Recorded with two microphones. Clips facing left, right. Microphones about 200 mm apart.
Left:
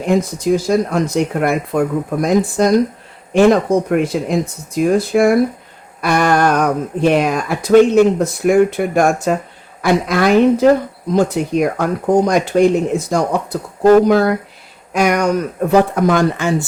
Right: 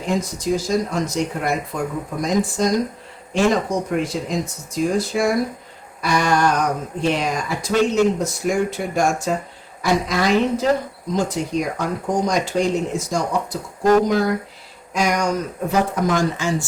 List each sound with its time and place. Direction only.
0.0 s speech: 60° left (ahead or behind)